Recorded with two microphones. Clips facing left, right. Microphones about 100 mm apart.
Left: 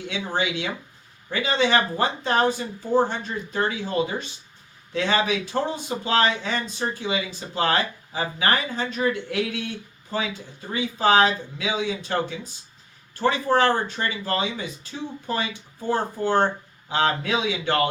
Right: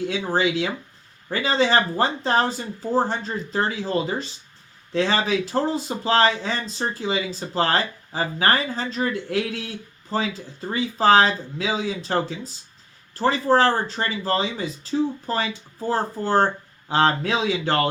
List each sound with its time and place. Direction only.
0.1 s speech: 35° right (ahead or behind)